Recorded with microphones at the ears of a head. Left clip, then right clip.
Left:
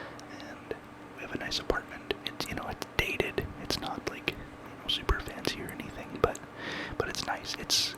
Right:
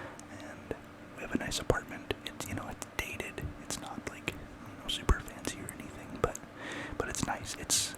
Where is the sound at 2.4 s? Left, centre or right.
Left.